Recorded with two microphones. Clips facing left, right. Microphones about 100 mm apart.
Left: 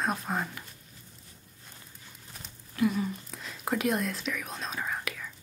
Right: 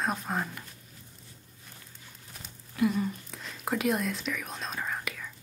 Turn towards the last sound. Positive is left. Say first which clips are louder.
# even
turn(degrees=0)  # may be behind; listen again after turning